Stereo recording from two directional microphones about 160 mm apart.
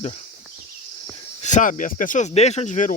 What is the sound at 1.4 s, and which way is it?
Speech, 50° left (ahead or behind).